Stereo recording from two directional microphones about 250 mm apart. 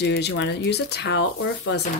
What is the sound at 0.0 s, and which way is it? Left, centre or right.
A woman's voice, left.